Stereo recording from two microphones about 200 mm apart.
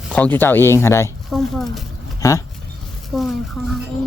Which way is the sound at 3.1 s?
Centre (ahead or behind).